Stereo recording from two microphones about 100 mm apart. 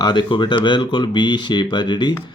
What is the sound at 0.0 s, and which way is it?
Speech, 50° left (ahead or behind).